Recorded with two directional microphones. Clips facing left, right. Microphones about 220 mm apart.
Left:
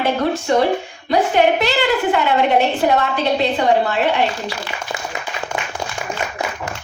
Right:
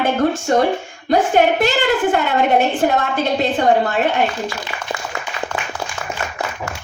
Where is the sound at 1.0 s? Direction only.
45° right (ahead or behind).